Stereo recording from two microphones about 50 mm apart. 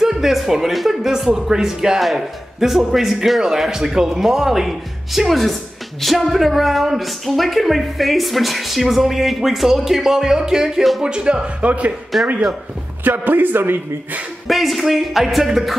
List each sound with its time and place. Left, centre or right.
0.0 s speech: centre; by 11.9 s right
12.1 s speech: centre
13.0 s speech: right
14.5 s speech: centre